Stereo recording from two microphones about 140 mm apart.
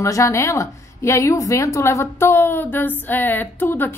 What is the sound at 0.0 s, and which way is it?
A woman's voice, 20° left (ahead or behind).